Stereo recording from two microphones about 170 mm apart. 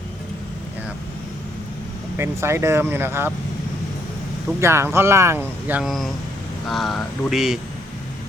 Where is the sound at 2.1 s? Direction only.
15° right (ahead or behind).